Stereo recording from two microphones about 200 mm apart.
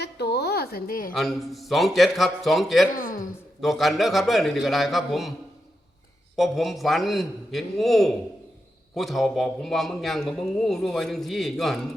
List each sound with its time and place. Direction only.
0.0 s a sound: 55° left (ahead or behind)
1.1 s a man's voice: centre (ahead or behind)
2.9 s speech: 45° left (ahead or behind)
3.6 s a man's voice: centre (ahead or behind)
6.3 s a man's voice: centre (ahead or behind)